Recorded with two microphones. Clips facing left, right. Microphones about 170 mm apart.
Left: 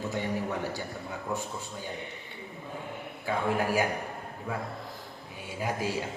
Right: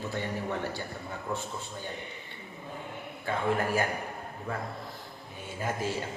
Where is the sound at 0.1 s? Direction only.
15° left (ahead or behind).